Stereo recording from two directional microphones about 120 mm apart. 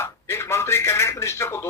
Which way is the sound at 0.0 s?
20° left (ahead or behind).